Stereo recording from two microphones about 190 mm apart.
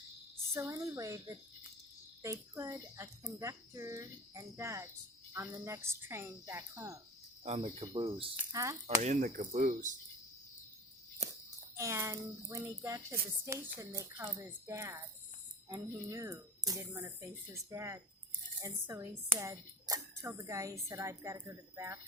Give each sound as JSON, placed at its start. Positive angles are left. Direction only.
{"t": 0.5, "sound": "a woman's voice", "side_deg": -15}
{"t": 7.4, "sound": "speech", "side_deg": -30}
{"t": 8.4, "sound": "a woman's voice", "side_deg": -15}
{"t": 9.0, "sound": "speech", "side_deg": -40}
{"t": 11.2, "sound": "a sound", "side_deg": -35}
{"t": 11.8, "sound": "a woman's voice", "side_deg": -15}